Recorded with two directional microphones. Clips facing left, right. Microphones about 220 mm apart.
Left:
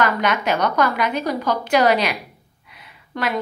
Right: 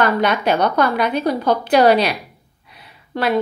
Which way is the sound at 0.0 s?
35° right (ahead or behind).